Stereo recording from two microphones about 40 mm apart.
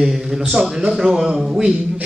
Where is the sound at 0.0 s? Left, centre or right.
Centre.